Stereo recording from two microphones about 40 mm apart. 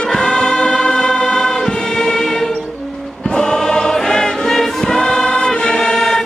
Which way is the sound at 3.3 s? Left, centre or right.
Centre.